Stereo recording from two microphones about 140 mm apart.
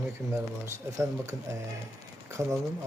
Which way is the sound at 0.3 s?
20° right (ahead or behind).